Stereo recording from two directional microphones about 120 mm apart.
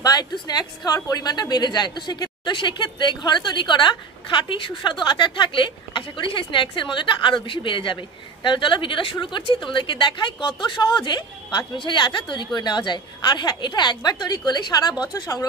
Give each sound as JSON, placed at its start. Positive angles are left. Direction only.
{"t": 0.0, "sound": "a woman's voice", "side_deg": 35}